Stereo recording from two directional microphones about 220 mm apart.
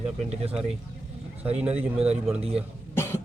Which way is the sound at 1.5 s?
5° right (ahead or behind).